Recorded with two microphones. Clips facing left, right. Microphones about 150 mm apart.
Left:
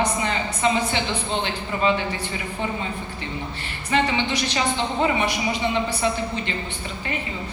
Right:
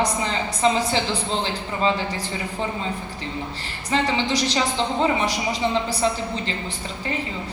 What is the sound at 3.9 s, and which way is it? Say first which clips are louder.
A woman's voice: even; 35° right (ahead or behind).